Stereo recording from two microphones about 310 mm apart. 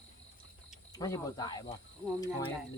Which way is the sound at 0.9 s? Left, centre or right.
Centre.